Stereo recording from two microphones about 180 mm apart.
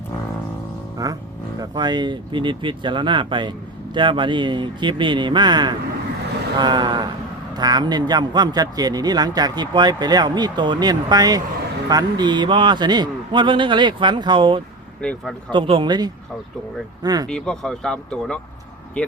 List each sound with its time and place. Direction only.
1.0 s a man's voice: 20° right (ahead or behind)
15.0 s speech: 5° left (ahead or behind)
15.5 s a man's voice: 30° right (ahead or behind)
17.2 s speech: 5° left (ahead or behind)